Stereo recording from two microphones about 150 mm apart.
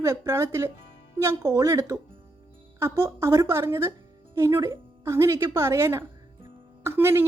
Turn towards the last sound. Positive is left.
turn(degrees=-15)  # may be behind; listen again after turning